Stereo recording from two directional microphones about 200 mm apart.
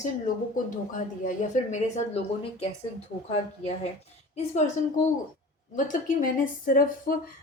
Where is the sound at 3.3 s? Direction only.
30° left (ahead or behind).